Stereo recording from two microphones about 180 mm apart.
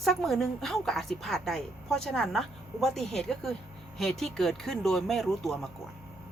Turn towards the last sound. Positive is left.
turn(degrees=0)  # may be behind; listen again after turning